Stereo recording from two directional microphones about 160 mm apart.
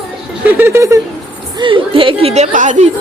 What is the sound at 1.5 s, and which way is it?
A woman's voice, 30° right (ahead or behind).